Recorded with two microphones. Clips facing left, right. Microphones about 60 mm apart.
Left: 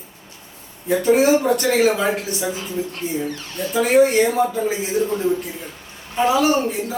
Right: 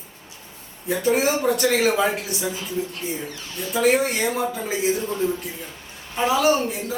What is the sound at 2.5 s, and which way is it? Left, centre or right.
Speech, left.